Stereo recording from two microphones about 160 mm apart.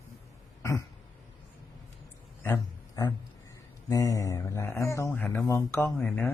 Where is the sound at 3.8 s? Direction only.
20° left (ahead or behind).